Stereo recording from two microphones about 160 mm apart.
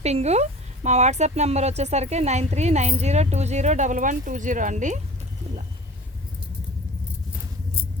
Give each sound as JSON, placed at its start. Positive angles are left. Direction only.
{"t": 0.0, "sound": "speech", "side_deg": -45}